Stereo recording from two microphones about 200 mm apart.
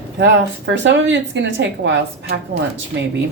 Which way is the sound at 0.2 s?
65° right (ahead or behind).